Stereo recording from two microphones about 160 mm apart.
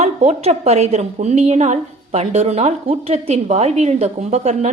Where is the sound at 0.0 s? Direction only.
45° right (ahead or behind).